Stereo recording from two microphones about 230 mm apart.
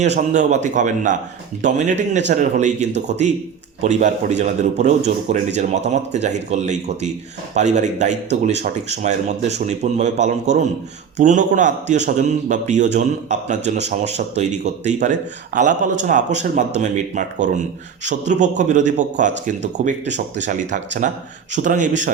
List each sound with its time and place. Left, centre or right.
0.0 s a man's voice: right